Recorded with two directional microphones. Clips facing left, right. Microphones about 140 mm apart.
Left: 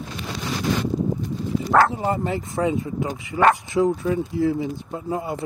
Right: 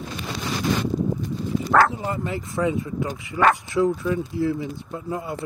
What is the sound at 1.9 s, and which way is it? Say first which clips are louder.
Speech: left 4 dB; 35° left (ahead or behind).